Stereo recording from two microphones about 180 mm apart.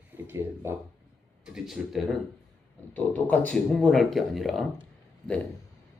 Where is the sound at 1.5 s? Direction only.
Centre (ahead or behind).